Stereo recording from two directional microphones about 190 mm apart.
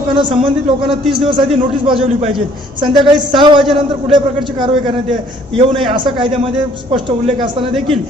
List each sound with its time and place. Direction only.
0.1 s a man's voice: 25° right (ahead or behind)